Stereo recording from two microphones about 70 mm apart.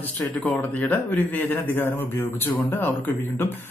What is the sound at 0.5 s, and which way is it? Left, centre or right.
Speech, left.